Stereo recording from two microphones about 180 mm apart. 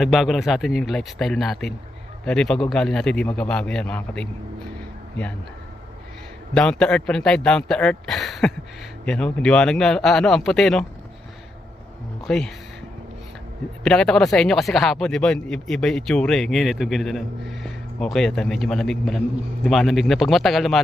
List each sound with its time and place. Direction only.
0.0 s speech: centre (ahead or behind)
6.5 s speech: 5° left (ahead or behind)
12.2 s speech: 5° left (ahead or behind)
13.8 s speech: 5° left (ahead or behind)